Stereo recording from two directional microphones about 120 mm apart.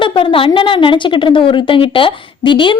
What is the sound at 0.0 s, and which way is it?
A woman's voice, 45° left (ahead or behind).